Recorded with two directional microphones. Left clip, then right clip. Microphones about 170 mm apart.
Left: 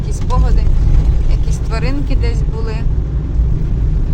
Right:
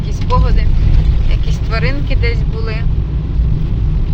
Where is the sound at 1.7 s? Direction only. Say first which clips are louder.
Right 3 dB; 20° left (ahead or behind).